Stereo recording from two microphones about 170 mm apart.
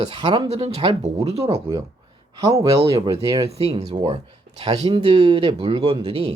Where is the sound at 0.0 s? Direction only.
40° right (ahead or behind).